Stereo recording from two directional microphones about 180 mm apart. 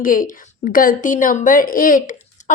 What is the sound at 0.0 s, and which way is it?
A woman's voice, 50° left (ahead or behind).